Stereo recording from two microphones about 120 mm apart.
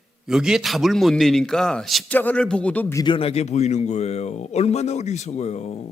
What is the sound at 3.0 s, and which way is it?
A man's voice, 50° left (ahead or behind).